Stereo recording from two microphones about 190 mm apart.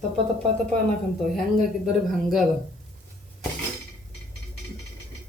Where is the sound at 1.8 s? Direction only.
Centre (ahead or behind).